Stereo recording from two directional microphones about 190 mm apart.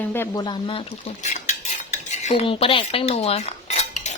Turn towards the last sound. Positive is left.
turn(degrees=35)  # may be behind; listen again after turning